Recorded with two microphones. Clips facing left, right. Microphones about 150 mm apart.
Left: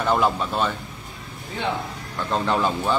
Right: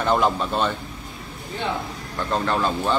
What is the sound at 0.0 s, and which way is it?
Speech, 5° left (ahead or behind).